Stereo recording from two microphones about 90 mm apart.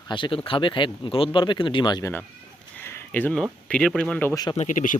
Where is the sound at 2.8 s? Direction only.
25° left (ahead or behind).